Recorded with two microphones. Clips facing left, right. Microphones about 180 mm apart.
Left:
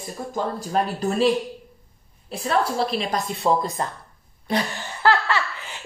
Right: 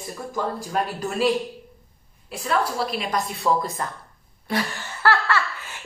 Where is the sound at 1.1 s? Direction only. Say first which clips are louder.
Left 1 dB; centre (ahead or behind).